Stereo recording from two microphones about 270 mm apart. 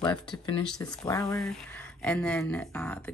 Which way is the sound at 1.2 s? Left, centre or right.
Centre.